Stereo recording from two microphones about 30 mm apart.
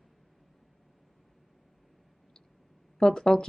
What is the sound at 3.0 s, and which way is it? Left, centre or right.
Speech, centre.